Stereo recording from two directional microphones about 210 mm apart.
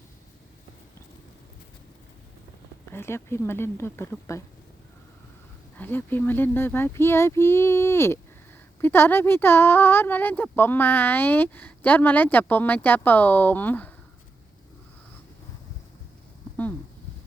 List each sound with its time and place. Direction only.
2.8 s speech: 10° left (ahead or behind)
5.7 s speech: 10° left (ahead or behind)